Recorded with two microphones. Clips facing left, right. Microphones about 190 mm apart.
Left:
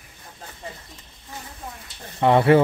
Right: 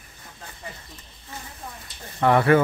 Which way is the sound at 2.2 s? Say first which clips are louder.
Left 2 dB; 25° left (ahead or behind).